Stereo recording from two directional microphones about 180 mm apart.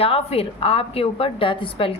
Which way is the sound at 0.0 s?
35° left (ahead or behind).